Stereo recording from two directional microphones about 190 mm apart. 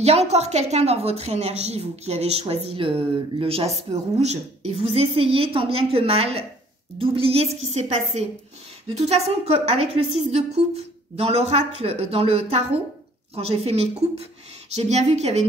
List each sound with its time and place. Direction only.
0.0 s a woman's voice: 35° right (ahead or behind)